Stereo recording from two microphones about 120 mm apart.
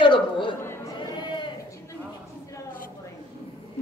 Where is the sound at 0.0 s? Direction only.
40° left (ahead or behind).